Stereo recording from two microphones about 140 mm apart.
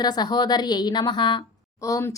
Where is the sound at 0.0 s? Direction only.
30° left (ahead or behind).